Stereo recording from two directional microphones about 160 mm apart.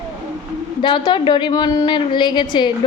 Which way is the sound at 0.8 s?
30° left (ahead or behind).